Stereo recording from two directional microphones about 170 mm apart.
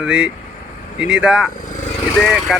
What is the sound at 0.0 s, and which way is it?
Speech, 5° right (ahead or behind).